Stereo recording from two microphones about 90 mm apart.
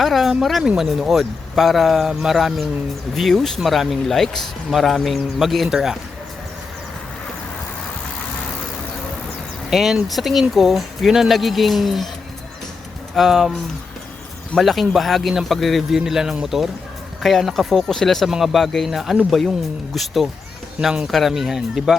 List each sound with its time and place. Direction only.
0.0 s a man's voice: centre (ahead or behind)
9.6 s a man's voice: 5° right (ahead or behind)
13.1 s a man's voice: centre (ahead or behind)
14.6 s a man's voice: centre (ahead or behind)